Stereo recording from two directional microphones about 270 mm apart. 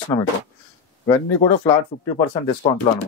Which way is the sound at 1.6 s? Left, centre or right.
Centre.